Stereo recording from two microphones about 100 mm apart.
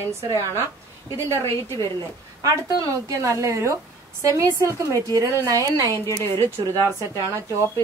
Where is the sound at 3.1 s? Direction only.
30° right (ahead or behind).